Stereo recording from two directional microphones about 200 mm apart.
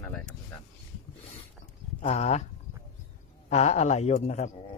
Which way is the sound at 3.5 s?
35° left (ahead or behind).